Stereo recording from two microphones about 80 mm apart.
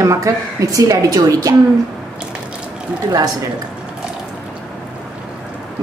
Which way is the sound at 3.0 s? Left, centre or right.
Right.